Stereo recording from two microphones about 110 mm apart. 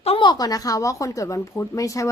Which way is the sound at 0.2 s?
40° left (ahead or behind).